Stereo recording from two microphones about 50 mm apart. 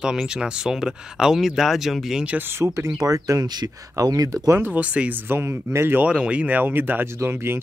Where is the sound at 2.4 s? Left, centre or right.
Right.